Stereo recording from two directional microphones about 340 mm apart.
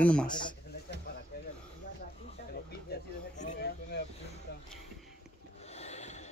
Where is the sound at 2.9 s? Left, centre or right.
Left.